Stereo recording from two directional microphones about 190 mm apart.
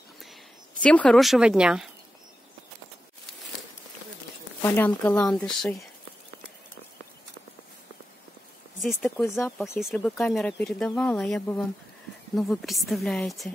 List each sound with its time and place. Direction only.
0.8 s speech: 5° left (ahead or behind)
4.6 s speech: 10° left (ahead or behind)
5.3 s speech: 5° left (ahead or behind)
8.8 s speech: centre (ahead or behind)